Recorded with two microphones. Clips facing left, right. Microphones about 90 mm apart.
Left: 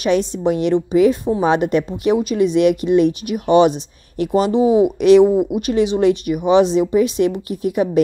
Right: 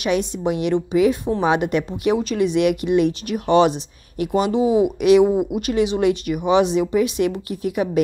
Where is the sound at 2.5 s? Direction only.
25° left (ahead or behind).